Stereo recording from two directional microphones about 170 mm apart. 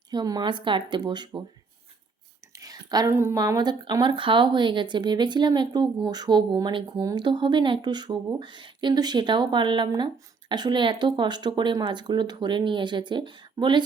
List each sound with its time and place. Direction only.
0.1 s speech: 25° right (ahead or behind)
2.5 s speech: 20° right (ahead or behind)